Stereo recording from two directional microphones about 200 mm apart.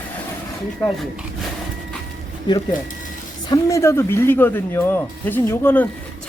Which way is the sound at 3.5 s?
15° left (ahead or behind).